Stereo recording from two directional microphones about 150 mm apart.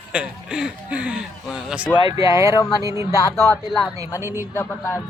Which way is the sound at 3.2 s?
15° left (ahead or behind).